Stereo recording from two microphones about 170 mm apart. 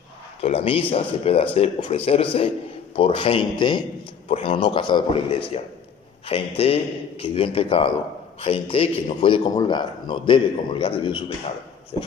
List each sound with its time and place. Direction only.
0.4 s a man's voice: 35° left (ahead or behind)